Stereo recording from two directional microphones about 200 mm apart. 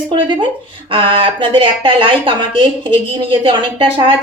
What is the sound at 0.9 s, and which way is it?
Speech, 25° right (ahead or behind).